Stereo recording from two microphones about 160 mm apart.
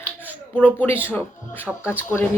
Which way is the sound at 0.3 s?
10° left (ahead or behind).